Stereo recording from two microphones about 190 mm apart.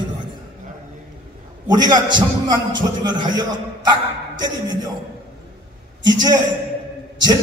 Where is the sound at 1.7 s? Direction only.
20° right (ahead or behind).